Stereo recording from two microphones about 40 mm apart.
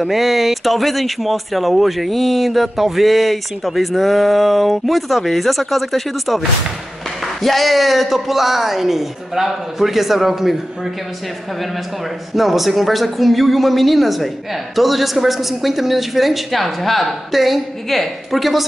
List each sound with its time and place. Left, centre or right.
0.0 s speech: centre
7.4 s speech: centre
12.4 s speech: centre